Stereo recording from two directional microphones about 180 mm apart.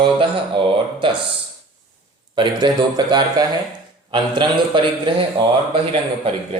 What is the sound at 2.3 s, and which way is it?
Speech, 25° right (ahead or behind).